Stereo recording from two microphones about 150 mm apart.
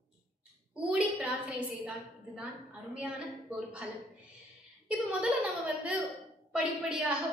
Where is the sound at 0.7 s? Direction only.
5° right (ahead or behind).